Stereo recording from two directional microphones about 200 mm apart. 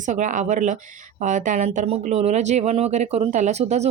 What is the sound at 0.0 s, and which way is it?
Speech, 40° right (ahead or behind).